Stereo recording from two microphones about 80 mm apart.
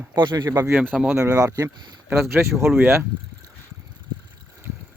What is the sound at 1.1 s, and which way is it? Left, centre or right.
Speech, right.